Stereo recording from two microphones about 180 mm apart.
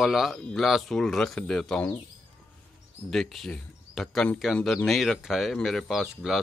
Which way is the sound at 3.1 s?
Centre (ahead or behind).